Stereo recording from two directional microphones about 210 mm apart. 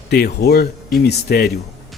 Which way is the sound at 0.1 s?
50° left (ahead or behind).